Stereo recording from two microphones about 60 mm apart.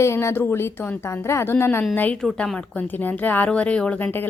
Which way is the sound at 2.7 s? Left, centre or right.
Left.